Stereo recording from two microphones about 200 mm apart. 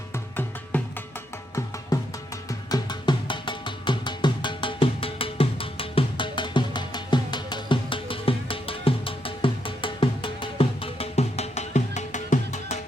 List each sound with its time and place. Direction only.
0.1 s music: 10° left (ahead or behind)
1.9 s music: 20° left (ahead or behind); by 12.8 s 35° left (ahead or behind)